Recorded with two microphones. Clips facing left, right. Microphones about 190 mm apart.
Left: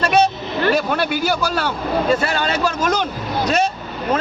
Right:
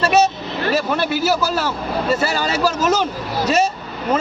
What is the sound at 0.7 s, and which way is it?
A man's voice, 5° right (ahead or behind).